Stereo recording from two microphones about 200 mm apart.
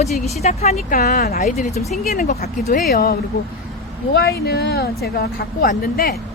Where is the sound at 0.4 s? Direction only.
35° left (ahead or behind); by 6.1 s 50° left (ahead or behind).